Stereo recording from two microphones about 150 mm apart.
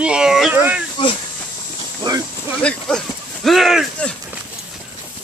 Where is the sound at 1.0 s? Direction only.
35° left (ahead or behind).